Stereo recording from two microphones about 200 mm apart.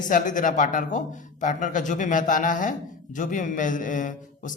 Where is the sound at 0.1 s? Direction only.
40° left (ahead or behind).